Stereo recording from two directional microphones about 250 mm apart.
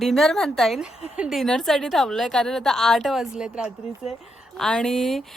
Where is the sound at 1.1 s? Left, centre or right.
Centre.